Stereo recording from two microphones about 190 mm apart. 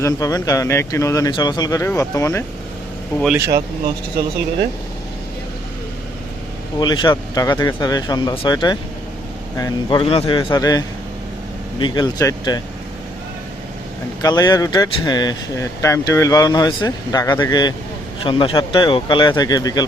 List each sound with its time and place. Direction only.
0.0 s speech: 20° left (ahead or behind)
3.3 s speech: 15° right (ahead or behind)
6.7 s speech: 25° left (ahead or behind)
14.2 s speech: 20° left (ahead or behind)